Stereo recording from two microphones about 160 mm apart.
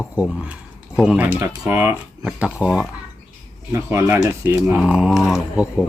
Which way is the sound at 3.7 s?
20° right (ahead or behind).